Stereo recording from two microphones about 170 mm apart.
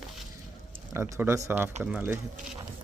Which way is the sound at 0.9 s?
15° right (ahead or behind).